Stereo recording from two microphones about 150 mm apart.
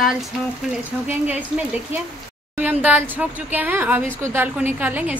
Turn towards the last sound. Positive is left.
turn(degrees=-10)  # may be behind; listen again after turning